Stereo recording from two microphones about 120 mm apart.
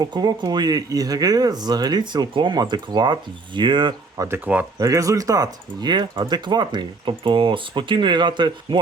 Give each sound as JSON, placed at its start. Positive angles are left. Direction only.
{"t": 0.0, "sound": "speech", "side_deg": -35}
{"t": 4.2, "sound": "speech", "side_deg": -30}